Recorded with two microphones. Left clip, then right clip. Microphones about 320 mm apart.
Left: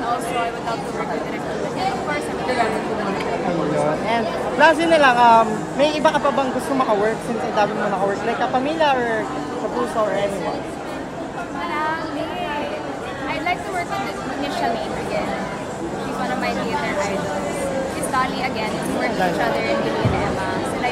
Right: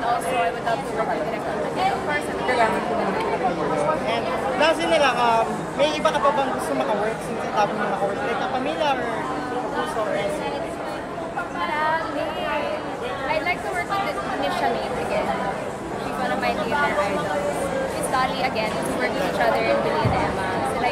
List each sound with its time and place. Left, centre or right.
4.1 s a sound: left
8.6 s speech: left
18.1 s speech: centre